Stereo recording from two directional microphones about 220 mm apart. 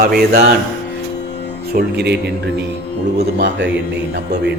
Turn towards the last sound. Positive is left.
turn(degrees=-55)  # may be behind; listen again after turning